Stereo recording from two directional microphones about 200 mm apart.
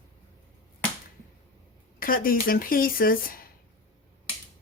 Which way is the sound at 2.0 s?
45° left (ahead or behind).